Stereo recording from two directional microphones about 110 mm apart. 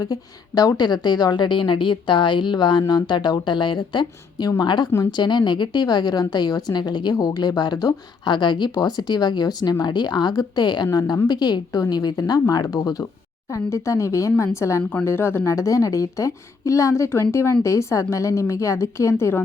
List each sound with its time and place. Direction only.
0.0 s a woman's voice: 35° left (ahead or behind)